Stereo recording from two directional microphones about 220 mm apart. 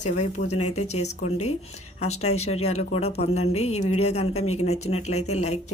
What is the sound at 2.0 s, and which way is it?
Speech, 30° left (ahead or behind).